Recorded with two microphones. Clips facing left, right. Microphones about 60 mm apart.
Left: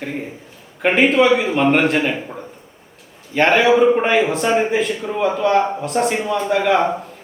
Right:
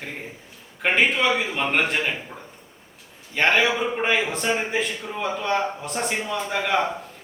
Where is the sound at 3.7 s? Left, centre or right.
Centre.